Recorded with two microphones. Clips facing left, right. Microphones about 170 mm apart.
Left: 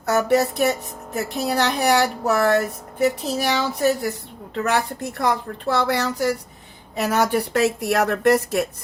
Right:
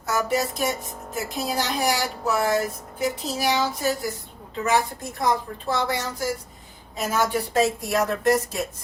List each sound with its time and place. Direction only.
0.0 s a woman's voice: 65° left (ahead or behind)